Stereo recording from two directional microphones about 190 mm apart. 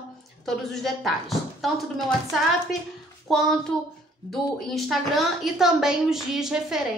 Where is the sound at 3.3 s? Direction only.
Centre (ahead or behind).